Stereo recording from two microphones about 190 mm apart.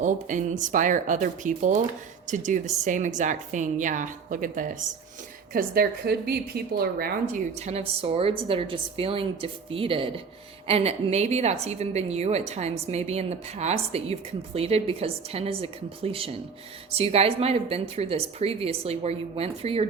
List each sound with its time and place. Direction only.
0.0 s a woman's voice: 40° right (ahead or behind)
5.5 s a woman's voice: 55° right (ahead or behind)
7.5 s a woman's voice: 35° right (ahead or behind)